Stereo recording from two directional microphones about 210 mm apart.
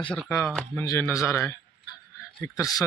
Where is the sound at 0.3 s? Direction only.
15° left (ahead or behind).